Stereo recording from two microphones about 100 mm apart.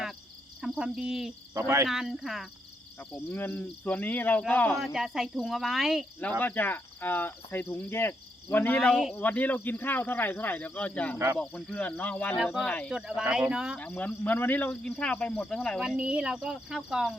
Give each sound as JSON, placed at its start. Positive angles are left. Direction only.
{"t": 0.6, "sound": "cricket", "side_deg": -5}
{"t": 1.5, "sound": "speech", "side_deg": -30}
{"t": 1.9, "sound": "cricket", "side_deg": -5}
{"t": 3.2, "sound": "cricket", "side_deg": 20}
{"t": 4.8, "sound": "cricket", "side_deg": -5}
{"t": 6.4, "sound": "cricket", "side_deg": 20}
{"t": 9.1, "sound": "speech", "side_deg": 15}
{"t": 12.9, "sound": "speech", "side_deg": -5}
{"t": 13.7, "sound": "speech", "side_deg": 15}
{"t": 14.7, "sound": "speech", "side_deg": 10}
{"t": 16.0, "sound": "speech", "side_deg": -10}